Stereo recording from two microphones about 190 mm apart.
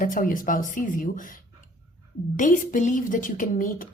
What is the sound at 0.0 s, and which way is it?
Speech, 45° left (ahead or behind).